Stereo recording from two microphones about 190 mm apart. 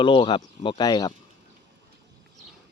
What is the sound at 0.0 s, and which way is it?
Speech, 25° left (ahead or behind).